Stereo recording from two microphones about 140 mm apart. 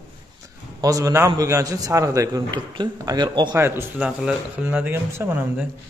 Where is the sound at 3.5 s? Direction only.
15° right (ahead or behind).